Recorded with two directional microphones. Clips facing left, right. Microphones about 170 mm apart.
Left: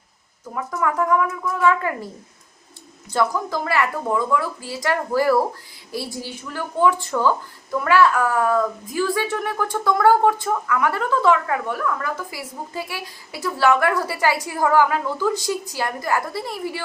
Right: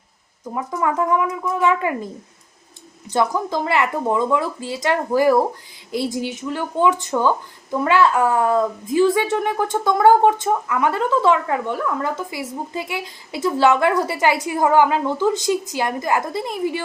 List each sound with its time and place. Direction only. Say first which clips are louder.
0.5 s speech: right 2 dB; 20° right (ahead or behind)
3.1 s speech: right 2 dB; 20° right (ahead or behind)